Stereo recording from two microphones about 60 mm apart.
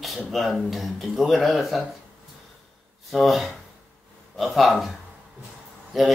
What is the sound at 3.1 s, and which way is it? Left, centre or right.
Speech, centre.